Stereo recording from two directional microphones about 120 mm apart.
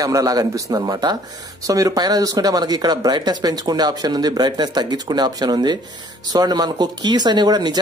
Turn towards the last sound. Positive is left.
turn(degrees=-35)  # may be behind; listen again after turning